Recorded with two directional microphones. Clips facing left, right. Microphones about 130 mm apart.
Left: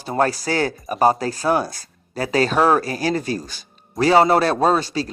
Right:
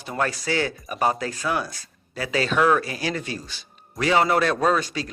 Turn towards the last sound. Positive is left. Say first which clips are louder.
# left 4 dB
turn(degrees=30)  # may be behind; listen again after turning